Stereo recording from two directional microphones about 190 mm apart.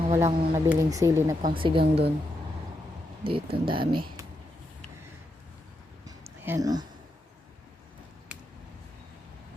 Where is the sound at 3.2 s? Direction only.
25° right (ahead or behind).